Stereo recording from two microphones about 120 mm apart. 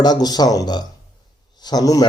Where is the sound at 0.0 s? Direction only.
35° left (ahead or behind).